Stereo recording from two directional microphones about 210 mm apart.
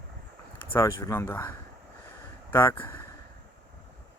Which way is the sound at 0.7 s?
10° left (ahead or behind).